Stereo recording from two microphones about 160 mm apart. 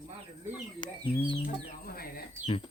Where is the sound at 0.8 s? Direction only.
30° left (ahead or behind).